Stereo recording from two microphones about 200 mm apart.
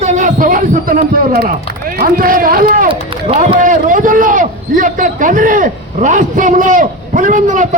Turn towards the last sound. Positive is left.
turn(degrees=-40)  # may be behind; listen again after turning